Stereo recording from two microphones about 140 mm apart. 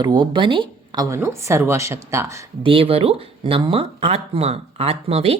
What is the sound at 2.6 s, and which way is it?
Speech, 40° right (ahead or behind).